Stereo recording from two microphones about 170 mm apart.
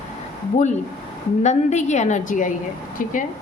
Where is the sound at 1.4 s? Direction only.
45° left (ahead or behind).